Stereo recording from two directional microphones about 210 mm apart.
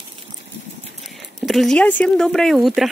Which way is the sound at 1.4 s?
Centre (ahead or behind).